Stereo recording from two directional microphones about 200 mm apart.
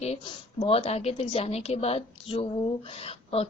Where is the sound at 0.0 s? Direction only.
30° left (ahead or behind).